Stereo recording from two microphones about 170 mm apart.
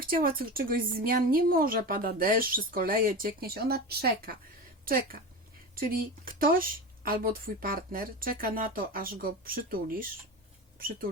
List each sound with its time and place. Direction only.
0.0 s speech: 55° right (ahead or behind)
4.9 s speech: 60° right (ahead or behind)